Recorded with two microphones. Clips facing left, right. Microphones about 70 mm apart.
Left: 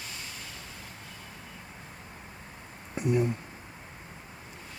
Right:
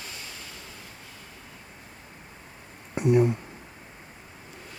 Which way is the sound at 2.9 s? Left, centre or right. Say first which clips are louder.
Right 6 dB; right.